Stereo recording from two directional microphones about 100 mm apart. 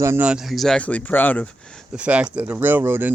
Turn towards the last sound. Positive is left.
turn(degrees=-20)  # may be behind; listen again after turning